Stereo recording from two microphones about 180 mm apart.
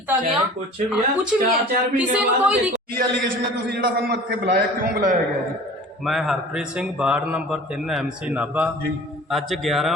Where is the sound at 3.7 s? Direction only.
65° right (ahead or behind).